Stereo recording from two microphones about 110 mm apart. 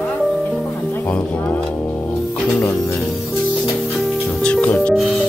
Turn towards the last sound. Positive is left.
turn(degrees=15)  # may be behind; listen again after turning